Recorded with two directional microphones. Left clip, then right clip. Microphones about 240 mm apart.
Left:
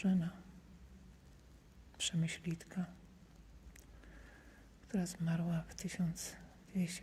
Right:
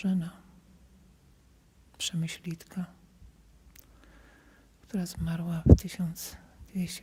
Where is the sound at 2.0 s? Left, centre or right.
Right.